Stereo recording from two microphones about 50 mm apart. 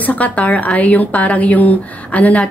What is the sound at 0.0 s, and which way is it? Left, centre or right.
A woman's voice, left.